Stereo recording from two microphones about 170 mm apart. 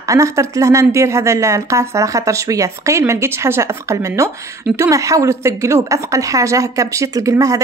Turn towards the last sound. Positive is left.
turn(degrees=-20)  # may be behind; listen again after turning